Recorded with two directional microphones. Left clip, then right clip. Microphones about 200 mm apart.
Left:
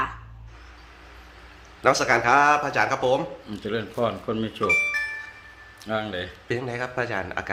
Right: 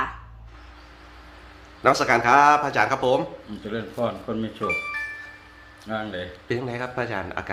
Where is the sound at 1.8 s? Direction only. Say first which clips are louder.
Right 1 dB; 10° right (ahead or behind).